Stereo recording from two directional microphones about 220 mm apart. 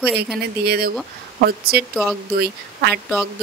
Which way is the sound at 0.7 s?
45° right (ahead or behind).